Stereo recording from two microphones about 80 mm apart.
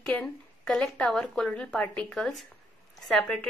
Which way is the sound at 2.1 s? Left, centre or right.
Centre.